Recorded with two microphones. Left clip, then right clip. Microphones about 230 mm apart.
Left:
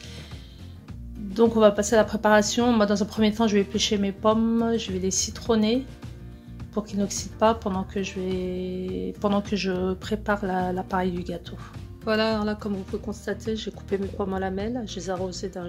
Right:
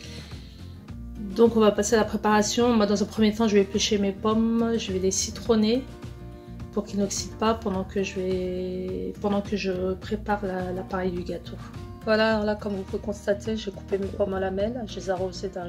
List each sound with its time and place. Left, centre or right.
1.3 s speech: left
9.2 s a woman's voice: left